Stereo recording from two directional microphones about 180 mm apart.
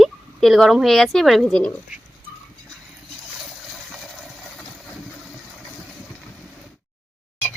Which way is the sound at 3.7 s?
Centre (ahead or behind).